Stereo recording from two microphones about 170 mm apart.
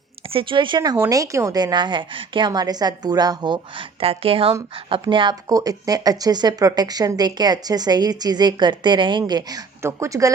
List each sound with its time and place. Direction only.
0.3 s speech: 30° right (ahead or behind)